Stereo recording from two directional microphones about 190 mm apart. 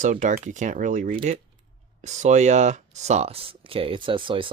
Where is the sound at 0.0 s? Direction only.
40° right (ahead or behind).